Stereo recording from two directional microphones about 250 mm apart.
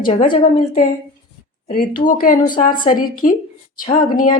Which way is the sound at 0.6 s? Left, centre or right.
Left.